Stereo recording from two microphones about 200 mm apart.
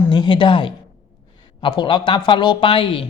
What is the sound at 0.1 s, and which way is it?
A man's voice, 20° left (ahead or behind).